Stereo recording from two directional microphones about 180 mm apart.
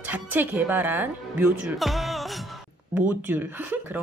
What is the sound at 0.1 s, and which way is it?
Speech, 10° right (ahead or behind).